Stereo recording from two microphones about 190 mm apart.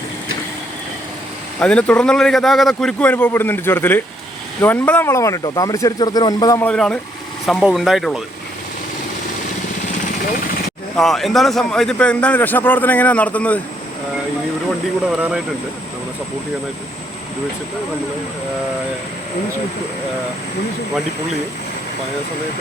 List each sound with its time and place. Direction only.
1.5 s a man's voice: 5° left (ahead or behind)
6.6 s a man's voice: 5° left (ahead or behind)
10.9 s a man's voice: centre (ahead or behind)